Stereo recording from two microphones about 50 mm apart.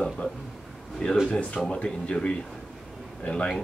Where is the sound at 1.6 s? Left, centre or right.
Centre.